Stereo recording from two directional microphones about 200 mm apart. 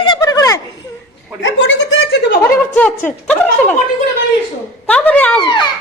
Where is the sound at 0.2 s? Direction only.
15° left (ahead or behind).